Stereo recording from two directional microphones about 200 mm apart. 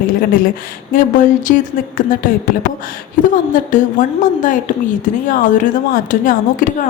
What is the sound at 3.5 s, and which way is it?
A woman's voice, 40° left (ahead or behind).